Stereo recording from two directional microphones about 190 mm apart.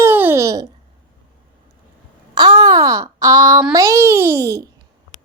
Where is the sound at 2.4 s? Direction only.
20° right (ahead or behind).